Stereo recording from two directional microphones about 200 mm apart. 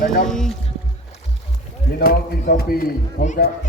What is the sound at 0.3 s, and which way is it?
Speech, centre (ahead or behind).